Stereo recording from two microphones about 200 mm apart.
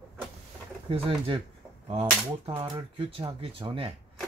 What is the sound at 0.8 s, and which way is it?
Speech, 25° right (ahead or behind).